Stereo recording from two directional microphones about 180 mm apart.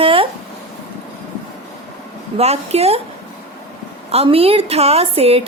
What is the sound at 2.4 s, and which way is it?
Speech, 35° right (ahead or behind).